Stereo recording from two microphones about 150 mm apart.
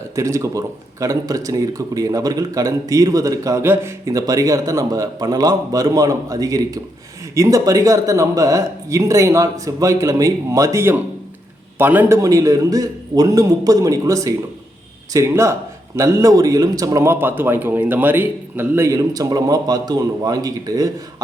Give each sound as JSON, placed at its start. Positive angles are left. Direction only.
{"t": 0.2, "sound": "speech", "side_deg": -20}